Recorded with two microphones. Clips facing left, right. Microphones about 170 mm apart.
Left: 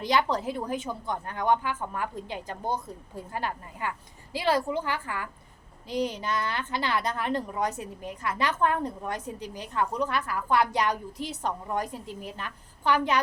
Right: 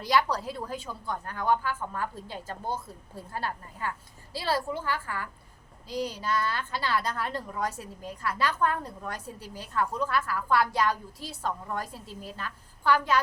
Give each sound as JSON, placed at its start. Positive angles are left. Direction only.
{"t": 0.0, "sound": "a woman's voice", "side_deg": 20}